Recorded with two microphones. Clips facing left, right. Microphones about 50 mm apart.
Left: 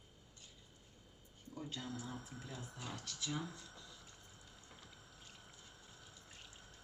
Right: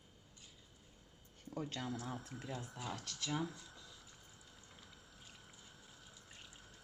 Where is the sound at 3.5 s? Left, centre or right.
Centre.